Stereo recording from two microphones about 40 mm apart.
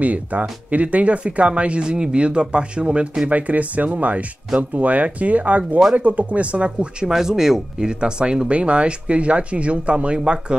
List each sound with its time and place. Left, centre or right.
0.0 s speech: right
3.3 s speech: right
7.1 s speech: centre
8.0 s speech: right